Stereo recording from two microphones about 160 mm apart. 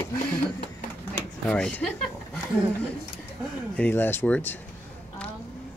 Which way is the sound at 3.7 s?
10° left (ahead or behind).